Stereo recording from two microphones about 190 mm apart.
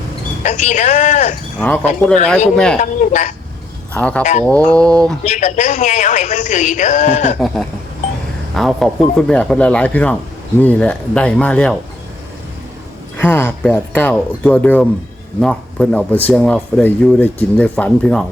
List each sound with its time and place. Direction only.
0.4 s speech: 40° left (ahead or behind)
1.5 s speech: 10° left (ahead or behind)
2.8 s speech: 40° left (ahead or behind)
3.9 s speech: 5° left (ahead or behind)
4.2 s speech: 40° left (ahead or behind)
4.4 s speech: 5° left (ahead or behind)
5.2 s speech: 40° left (ahead or behind)
7.3 s speech: 5° left (ahead or behind)
13.1 s speech: 10° left (ahead or behind)